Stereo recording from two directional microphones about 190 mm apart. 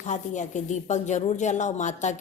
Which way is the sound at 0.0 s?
40° left (ahead or behind).